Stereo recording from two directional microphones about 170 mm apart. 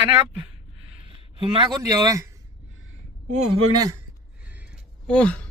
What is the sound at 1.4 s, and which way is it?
Speech, 30° right (ahead or behind).